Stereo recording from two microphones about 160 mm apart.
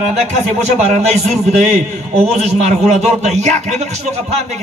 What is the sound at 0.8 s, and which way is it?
Speech, 45° right (ahead or behind).